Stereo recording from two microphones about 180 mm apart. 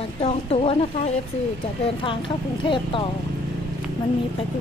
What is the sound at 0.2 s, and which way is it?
Speech, 35° left (ahead or behind).